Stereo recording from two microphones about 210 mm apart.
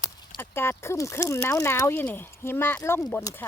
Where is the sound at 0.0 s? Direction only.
15° left (ahead or behind).